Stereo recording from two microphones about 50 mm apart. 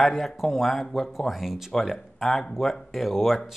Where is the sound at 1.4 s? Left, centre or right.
Centre.